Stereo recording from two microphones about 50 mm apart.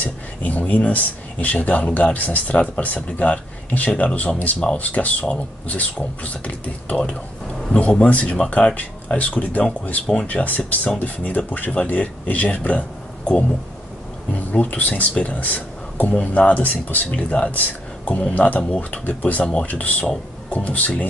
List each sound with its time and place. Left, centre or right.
0.0 s speech: left
14.3 s speech: left